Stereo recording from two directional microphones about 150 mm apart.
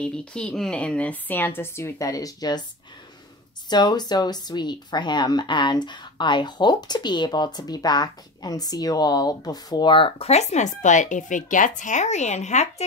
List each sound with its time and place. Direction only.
0.0 s a woman's voice: 5° left (ahead or behind); by 2.6 s 25° left (ahead or behind)
3.6 s speech: 30° left (ahead or behind); by 12.8 s 50° left (ahead or behind)